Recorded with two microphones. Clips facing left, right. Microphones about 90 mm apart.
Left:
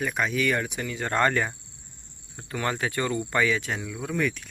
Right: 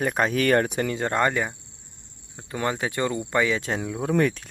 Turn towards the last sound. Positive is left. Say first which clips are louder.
# right 5 dB
turn(degrees=-35)  # may be behind; listen again after turning